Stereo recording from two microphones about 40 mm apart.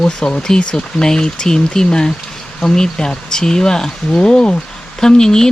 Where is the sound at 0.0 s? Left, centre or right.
Left.